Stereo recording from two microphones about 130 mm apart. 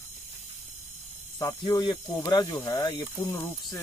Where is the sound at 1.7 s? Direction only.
25° left (ahead or behind).